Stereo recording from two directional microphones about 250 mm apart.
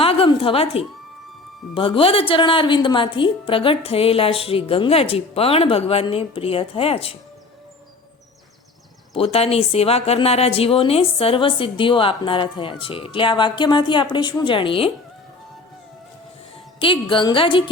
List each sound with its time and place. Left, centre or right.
0.0 s a sound: left
1.7 s a woman's voice: left
9.1 s a woman's voice: left
16.8 s a woman's voice: centre